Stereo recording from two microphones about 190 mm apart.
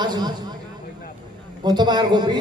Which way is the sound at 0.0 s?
20° right (ahead or behind).